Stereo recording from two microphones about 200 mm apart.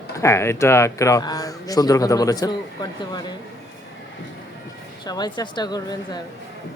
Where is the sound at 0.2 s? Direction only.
15° left (ahead or behind).